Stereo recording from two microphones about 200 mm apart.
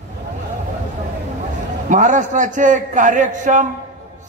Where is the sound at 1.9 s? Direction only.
40° right (ahead or behind).